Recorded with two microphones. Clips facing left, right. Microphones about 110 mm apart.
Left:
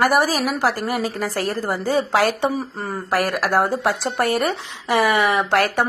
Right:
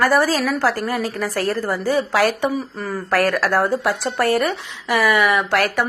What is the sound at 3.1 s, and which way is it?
Speech, 15° left (ahead or behind).